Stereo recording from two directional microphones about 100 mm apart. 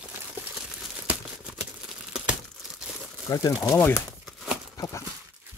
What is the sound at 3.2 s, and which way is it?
Speech, 40° left (ahead or behind).